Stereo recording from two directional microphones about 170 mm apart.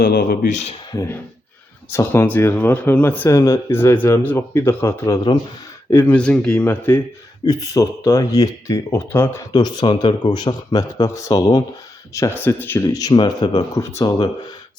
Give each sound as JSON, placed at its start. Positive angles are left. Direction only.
{"t": 0.0, "sound": "speech", "side_deg": 60}
{"t": 0.9, "sound": "speech", "side_deg": 10}
{"t": 5.9, "sound": "speech", "side_deg": 10}
{"t": 7.4, "sound": "speech", "side_deg": 20}